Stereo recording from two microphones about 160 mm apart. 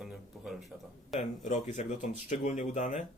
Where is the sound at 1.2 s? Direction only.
50° left (ahead or behind).